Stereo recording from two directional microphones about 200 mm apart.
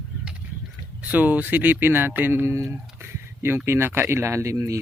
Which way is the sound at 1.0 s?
5° right (ahead or behind).